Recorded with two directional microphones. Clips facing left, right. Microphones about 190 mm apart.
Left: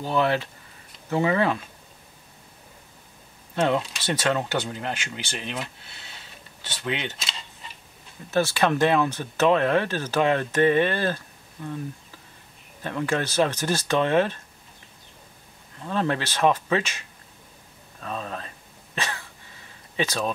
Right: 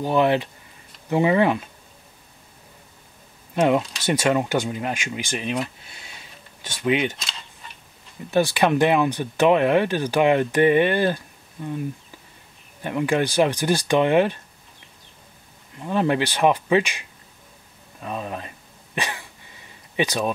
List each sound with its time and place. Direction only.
0.0 s speech: 15° right (ahead or behind)
3.5 s speech: 15° right (ahead or behind)
8.3 s speech: 15° right (ahead or behind)
12.8 s speech: 15° right (ahead or behind)
15.8 s speech: 15° right (ahead or behind)
18.0 s speech: 15° right (ahead or behind)
18.9 s cough: 15° right (ahead or behind)
20.0 s speech: 15° right (ahead or behind)